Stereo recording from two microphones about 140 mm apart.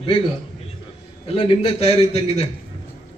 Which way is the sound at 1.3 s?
40° left (ahead or behind).